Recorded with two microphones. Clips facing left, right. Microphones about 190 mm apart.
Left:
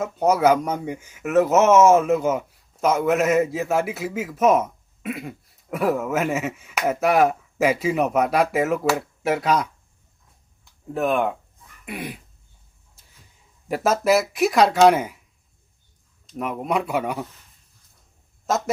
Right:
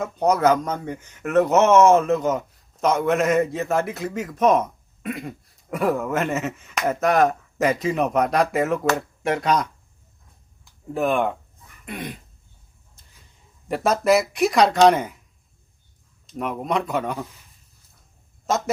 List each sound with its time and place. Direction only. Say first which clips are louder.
0.0 s speech: left 1 dB; 5° left (ahead or behind)
10.9 s speech: even; centre (ahead or behind)
13.0 s a sound: even; 5° left (ahead or behind)
13.7 s speech: even; 5° left (ahead or behind)
16.2 s speech: even; centre (ahead or behind)
18.4 s speech: even; centre (ahead or behind)